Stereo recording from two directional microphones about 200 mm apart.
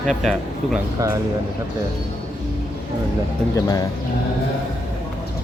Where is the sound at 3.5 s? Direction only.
15° left (ahead or behind).